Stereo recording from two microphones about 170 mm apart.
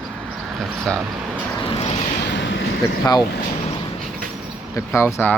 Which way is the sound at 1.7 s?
35° left (ahead or behind).